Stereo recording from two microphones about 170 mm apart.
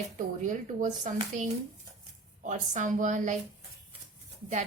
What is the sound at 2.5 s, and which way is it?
Speech, 45° right (ahead or behind).